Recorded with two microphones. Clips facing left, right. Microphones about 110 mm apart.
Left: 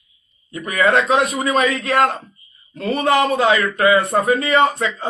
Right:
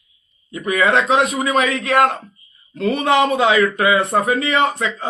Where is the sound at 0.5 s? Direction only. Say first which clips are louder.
Even; 10° right (ahead or behind).